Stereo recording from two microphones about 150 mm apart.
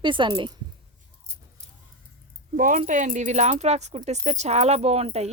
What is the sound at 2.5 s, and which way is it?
Speech, 65° right (ahead or behind).